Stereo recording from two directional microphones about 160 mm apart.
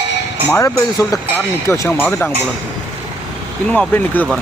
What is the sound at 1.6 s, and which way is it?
Speech, 20° left (ahead or behind).